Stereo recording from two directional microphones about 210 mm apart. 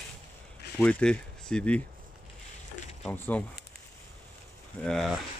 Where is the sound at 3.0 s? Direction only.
5° left (ahead or behind).